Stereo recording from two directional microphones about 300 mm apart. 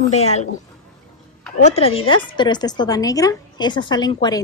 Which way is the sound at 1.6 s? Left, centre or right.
Left.